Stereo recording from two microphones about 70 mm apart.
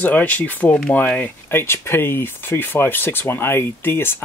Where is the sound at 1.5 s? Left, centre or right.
Left.